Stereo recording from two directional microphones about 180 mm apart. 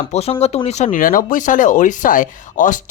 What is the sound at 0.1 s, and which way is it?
Speech, 35° left (ahead or behind).